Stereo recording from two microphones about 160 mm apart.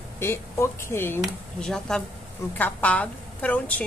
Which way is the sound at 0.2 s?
15° left (ahead or behind).